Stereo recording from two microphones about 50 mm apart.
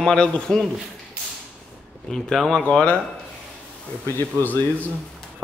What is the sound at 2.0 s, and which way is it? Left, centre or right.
Speech, centre.